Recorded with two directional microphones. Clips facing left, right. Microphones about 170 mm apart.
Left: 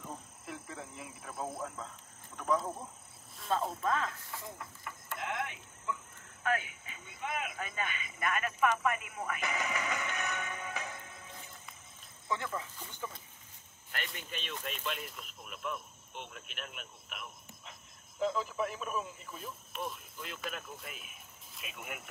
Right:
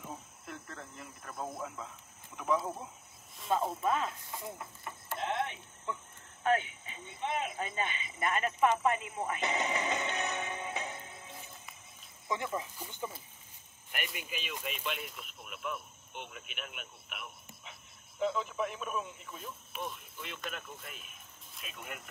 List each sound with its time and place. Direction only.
0.5 s speech: 5° left (ahead or behind); by 4.9 s 15° right (ahead or behind)
5.1 s speech: 30° right (ahead or behind); by 22.0 s 5° left (ahead or behind)